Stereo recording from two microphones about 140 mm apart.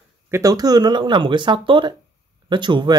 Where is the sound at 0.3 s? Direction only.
25° right (ahead or behind).